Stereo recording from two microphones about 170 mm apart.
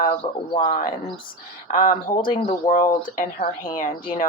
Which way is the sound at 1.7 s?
55° left (ahead or behind).